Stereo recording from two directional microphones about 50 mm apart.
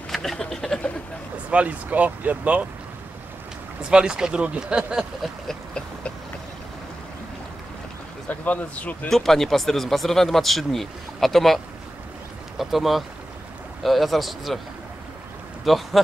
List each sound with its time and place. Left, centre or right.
0.1 s a sound: centre
1.5 s speech: right
3.9 s speech: centre
8.3 s speech: left
9.1 s speech: centre
15.6 s speech: centre